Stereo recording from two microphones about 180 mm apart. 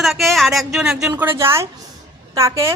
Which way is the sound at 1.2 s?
15° right (ahead or behind).